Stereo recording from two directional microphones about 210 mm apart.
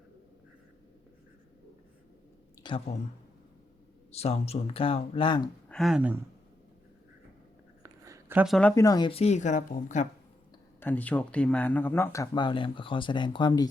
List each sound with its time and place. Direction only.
2.6 s speech: 30° left (ahead or behind)
4.1 s speech: 30° left (ahead or behind)
5.6 s speech: centre (ahead or behind)
7.8 s a sound: 15° right (ahead or behind)
8.5 s speech: 10° left (ahead or behind); by 10.1 s 35° left (ahead or behind)
10.8 s speech: 10° left (ahead or behind)